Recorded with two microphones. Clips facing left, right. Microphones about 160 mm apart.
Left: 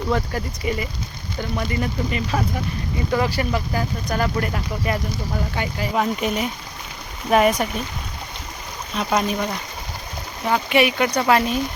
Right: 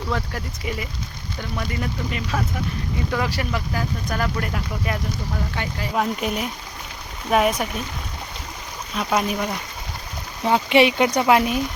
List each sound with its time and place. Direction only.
0.1 s speech: centre (ahead or behind)
9.0 s speech: 5° right (ahead or behind)
10.4 s speech: 25° right (ahead or behind)